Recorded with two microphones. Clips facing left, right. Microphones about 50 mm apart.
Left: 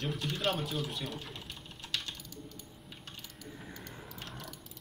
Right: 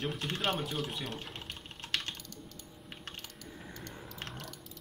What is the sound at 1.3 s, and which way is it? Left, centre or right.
Typing, right.